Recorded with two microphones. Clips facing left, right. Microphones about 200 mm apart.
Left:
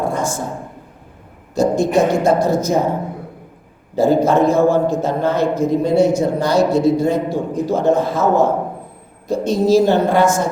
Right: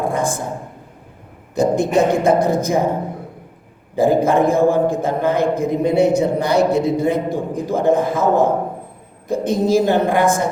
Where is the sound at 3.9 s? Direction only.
55° right (ahead or behind).